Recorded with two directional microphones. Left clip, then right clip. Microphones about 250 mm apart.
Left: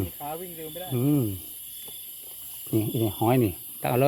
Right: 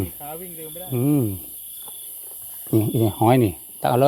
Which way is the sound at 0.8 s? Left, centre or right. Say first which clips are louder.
Right 4 dB; centre.